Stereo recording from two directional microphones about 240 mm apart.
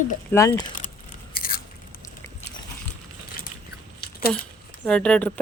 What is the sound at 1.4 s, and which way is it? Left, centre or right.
Chewing, left.